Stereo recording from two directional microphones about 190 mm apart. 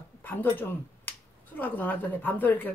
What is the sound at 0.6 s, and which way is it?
Speech, 10° left (ahead or behind).